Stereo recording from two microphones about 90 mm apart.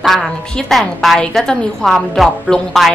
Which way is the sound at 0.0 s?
Centre (ahead or behind).